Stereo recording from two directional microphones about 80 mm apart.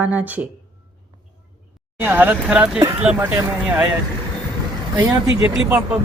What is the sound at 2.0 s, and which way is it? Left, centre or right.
Speech, right.